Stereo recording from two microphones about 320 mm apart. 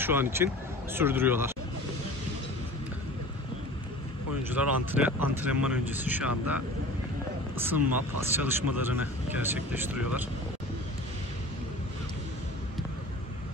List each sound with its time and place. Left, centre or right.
0.0 s speech: centre
4.6 s speech: centre